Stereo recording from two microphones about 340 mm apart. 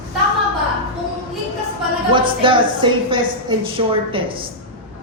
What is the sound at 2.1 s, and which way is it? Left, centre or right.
A woman's voice, centre.